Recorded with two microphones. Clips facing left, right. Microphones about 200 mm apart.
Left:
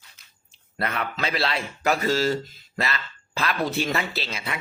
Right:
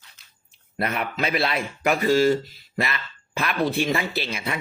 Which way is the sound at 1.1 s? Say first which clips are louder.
Right 4 dB; 15° right (ahead or behind).